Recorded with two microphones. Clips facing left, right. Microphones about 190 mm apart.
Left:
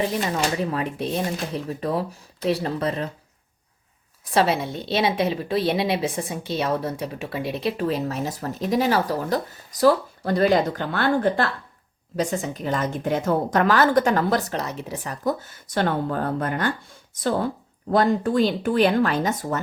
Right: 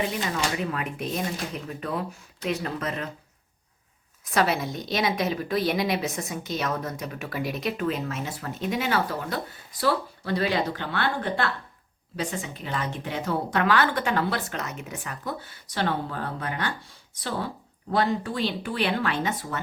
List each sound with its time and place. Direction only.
0.0 s a woman's voice: 35° left (ahead or behind)
4.3 s a woman's voice: 30° left (ahead or behind)